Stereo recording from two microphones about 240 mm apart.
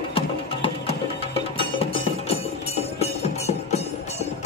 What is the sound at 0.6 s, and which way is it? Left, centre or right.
Music, left.